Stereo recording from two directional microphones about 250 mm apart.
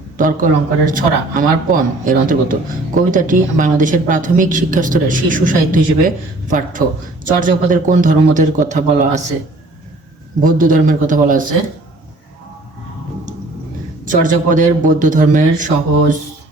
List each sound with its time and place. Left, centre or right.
0.2 s a woman's voice: right
10.4 s a woman's voice: right
14.0 s a woman's voice: right